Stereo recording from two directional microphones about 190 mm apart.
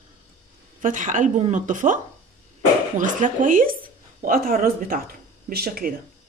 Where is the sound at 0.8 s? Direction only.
40° right (ahead or behind).